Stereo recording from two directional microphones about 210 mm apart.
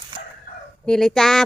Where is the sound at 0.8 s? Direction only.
5° left (ahead or behind).